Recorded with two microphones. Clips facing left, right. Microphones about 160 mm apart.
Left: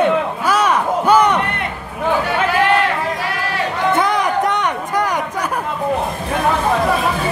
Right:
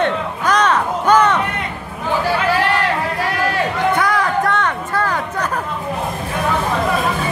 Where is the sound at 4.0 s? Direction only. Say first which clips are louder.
Left 1 dB; 20° left (ahead or behind).